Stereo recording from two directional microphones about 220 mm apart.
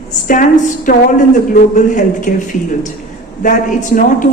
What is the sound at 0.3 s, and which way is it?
Speech, 35° left (ahead or behind).